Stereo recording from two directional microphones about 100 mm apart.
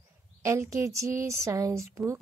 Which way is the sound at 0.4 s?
30° right (ahead or behind).